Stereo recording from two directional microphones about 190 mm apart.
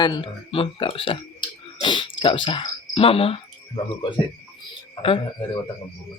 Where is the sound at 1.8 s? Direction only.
25° left (ahead or behind).